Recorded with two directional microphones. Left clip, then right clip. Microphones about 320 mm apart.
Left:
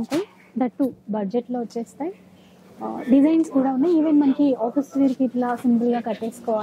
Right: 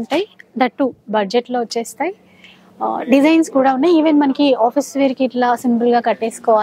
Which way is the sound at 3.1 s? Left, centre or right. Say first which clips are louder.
Right 5 dB; centre.